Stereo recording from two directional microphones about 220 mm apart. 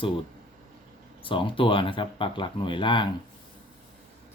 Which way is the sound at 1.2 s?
25° left (ahead or behind).